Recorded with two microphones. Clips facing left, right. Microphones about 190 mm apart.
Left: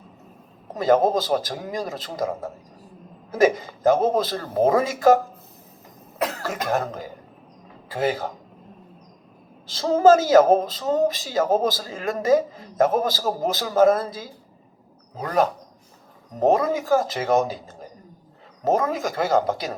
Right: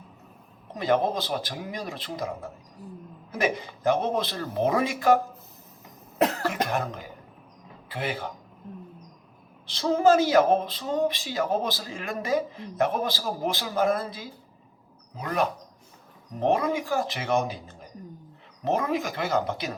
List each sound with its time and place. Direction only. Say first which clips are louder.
0.7 s speech: left 6 dB; 45° left (ahead or behind)
6.7 s speech: left 5 dB; 45° left (ahead or behind)
9.6 s speech: left 5 dB; 45° left (ahead or behind)